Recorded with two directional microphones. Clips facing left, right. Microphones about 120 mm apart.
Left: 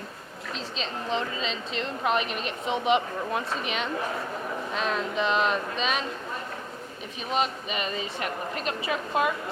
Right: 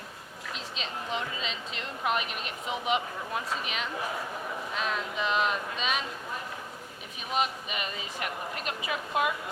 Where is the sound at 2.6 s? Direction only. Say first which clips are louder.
Left 5 dB; 30° left (ahead or behind).